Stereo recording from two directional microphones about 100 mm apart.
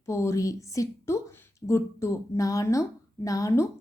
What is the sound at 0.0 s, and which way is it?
A woman's voice, 30° left (ahead or behind).